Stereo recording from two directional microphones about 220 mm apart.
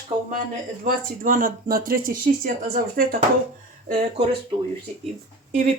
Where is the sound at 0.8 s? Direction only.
40° right (ahead or behind).